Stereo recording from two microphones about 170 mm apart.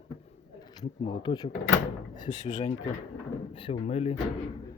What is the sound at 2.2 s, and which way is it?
Speech, 45° left (ahead or behind).